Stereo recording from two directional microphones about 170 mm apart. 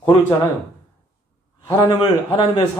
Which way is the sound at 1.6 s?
30° left (ahead or behind).